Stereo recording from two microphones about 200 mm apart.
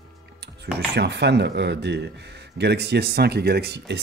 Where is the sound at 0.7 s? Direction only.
55° right (ahead or behind).